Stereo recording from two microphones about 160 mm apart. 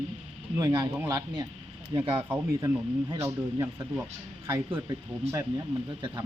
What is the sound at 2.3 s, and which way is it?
Speech, 15° right (ahead or behind).